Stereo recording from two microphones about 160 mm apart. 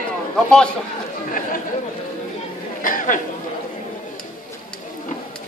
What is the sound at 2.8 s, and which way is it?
Speech, 55° left (ahead or behind).